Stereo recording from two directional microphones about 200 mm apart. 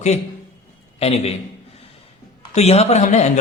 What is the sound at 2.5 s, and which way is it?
Speech, 35° left (ahead or behind).